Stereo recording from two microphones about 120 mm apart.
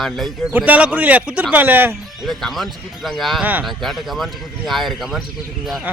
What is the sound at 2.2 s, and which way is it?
Speech, centre (ahead or behind).